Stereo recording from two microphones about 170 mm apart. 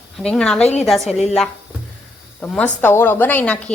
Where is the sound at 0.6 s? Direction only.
40° left (ahead or behind).